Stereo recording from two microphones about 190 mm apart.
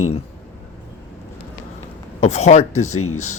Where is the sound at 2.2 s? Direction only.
35° left (ahead or behind).